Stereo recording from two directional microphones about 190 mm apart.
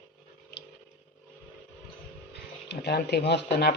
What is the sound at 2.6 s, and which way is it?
Speech, 60° left (ahead or behind).